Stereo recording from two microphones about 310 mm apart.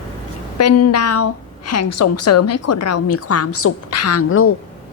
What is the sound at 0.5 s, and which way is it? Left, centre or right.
A woman's voice, left.